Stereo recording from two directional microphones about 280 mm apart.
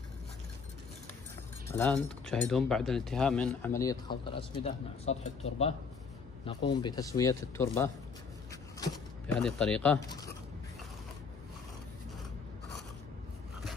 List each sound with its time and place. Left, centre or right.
1.7 s speech: centre; by 5.3 s left
6.4 s a man's voice: centre
8.9 s speech: centre